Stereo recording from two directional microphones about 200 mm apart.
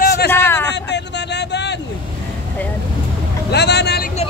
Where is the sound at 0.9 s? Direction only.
60° left (ahead or behind).